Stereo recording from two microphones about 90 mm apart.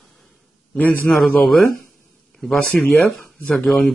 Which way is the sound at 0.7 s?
15° left (ahead or behind).